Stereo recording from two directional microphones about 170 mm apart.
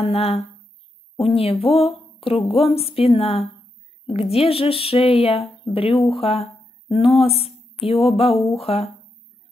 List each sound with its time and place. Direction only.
0.0 s speech: 35° left (ahead or behind)
6.1 s a sound: 35° left (ahead or behind)
7.2 s speech: 35° left (ahead or behind)